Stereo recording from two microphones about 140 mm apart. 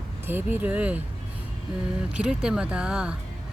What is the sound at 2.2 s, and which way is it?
Speech, 5° right (ahead or behind).